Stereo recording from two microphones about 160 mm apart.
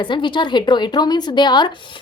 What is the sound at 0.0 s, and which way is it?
A woman's voice, 30° left (ahead or behind).